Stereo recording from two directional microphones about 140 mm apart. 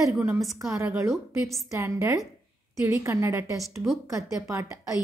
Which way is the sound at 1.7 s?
20° right (ahead or behind).